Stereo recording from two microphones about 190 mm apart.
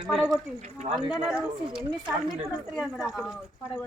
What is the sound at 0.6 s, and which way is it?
Speech, 35° right (ahead or behind).